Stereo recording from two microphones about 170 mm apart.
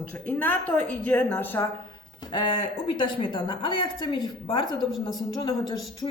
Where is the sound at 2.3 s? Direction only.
30° left (ahead or behind).